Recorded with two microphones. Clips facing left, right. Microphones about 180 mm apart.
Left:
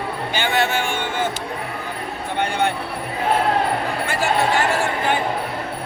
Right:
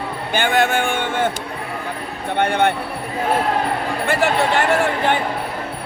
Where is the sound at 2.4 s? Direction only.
60° right (ahead or behind).